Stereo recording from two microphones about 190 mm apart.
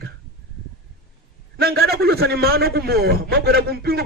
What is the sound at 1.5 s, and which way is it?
A man's voice, 55° right (ahead or behind).